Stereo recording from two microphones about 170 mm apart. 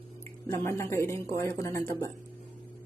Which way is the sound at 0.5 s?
15° left (ahead or behind).